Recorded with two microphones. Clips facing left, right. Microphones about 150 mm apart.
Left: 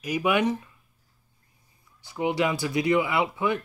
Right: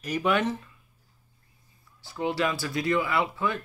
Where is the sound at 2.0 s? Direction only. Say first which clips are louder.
Left 2 dB; 20° left (ahead or behind).